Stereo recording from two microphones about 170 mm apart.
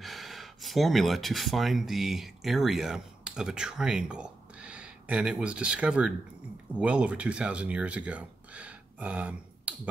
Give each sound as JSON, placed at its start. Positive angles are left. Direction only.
{"t": 0.0, "sound": "speech", "side_deg": 0}